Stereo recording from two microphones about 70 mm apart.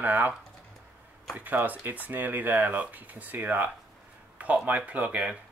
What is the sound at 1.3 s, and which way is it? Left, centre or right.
Speech, right.